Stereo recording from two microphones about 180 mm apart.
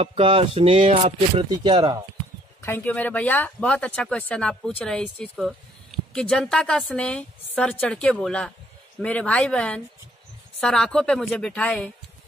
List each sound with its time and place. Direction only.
0.0 s speech: 30° right (ahead or behind)
1.5 s speech: 25° right (ahead or behind)
2.6 s speech: 10° left (ahead or behind)